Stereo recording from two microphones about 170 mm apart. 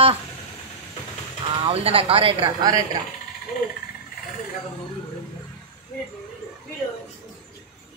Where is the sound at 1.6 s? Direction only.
35° right (ahead or behind).